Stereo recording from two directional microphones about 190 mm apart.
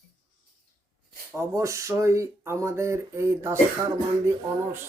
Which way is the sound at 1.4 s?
15° right (ahead or behind).